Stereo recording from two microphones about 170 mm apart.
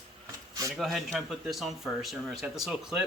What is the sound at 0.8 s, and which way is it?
Speech, centre (ahead or behind).